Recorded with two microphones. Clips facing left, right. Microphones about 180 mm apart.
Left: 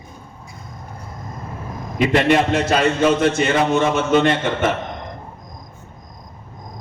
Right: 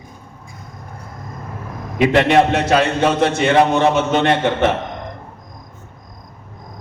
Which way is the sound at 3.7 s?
60° right (ahead or behind).